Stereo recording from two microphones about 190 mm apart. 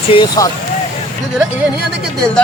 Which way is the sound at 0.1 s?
20° left (ahead or behind).